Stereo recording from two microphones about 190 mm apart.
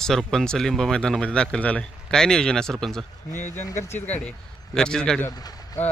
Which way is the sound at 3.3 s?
40° left (ahead or behind).